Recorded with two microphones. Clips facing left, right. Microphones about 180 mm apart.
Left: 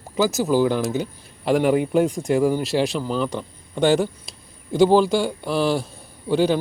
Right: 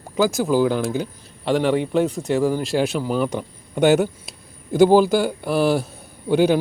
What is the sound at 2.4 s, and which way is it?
A man's voice, 5° right (ahead or behind).